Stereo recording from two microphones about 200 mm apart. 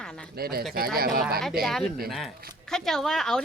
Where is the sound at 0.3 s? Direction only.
50° right (ahead or behind).